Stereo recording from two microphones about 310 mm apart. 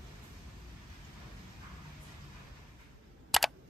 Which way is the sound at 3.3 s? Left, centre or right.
Centre.